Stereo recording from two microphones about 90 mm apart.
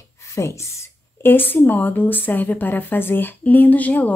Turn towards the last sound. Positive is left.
turn(degrees=15)  # may be behind; listen again after turning